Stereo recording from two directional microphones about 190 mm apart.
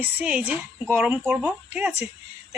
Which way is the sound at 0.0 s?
5° right (ahead or behind).